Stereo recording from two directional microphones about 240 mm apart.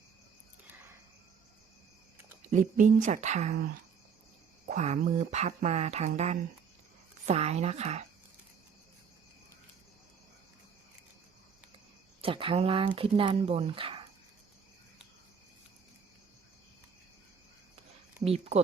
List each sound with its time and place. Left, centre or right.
2.5 s speech: right
4.7 s speech: right
12.2 s speech: right
18.3 s speech: right